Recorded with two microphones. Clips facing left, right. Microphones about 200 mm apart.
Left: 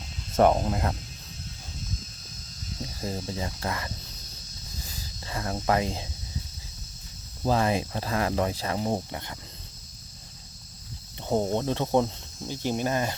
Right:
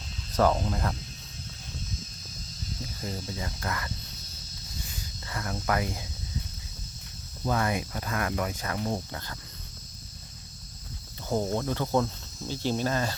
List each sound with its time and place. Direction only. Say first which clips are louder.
0.3 s speech: left 3 dB; 25° left (ahead or behind)
3.0 s speech: left 4 dB; 25° left (ahead or behind)
5.2 s speech: left 4 dB; 25° left (ahead or behind)
7.4 s speech: left 4 dB; 25° left (ahead or behind)
11.2 s speech: left 3 dB; 25° left (ahead or behind)